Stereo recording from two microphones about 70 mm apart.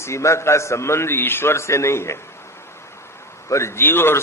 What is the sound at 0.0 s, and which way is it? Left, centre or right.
A man's voice, left.